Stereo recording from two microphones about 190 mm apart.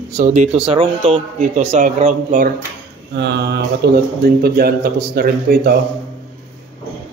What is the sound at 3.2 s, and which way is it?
Mantra, 60° right (ahead or behind).